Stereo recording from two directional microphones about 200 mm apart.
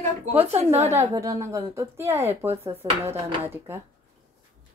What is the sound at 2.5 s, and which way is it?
Speech, 30° right (ahead or behind).